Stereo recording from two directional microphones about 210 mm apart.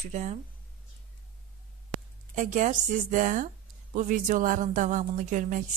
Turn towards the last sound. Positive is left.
turn(degrees=-35)  # may be behind; listen again after turning